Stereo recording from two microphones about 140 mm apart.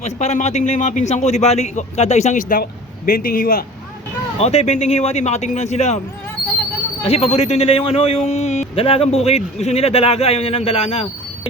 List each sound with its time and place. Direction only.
0.0 s speech: 55° left (ahead or behind); by 3.6 s 90° left
4.4 s a man's voice: 50° left (ahead or behind)
7.0 s a man's voice: 45° left (ahead or behind)